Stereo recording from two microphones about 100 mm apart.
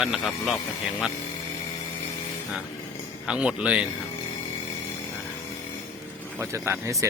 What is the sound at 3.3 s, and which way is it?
Speech, 10° right (ahead or behind).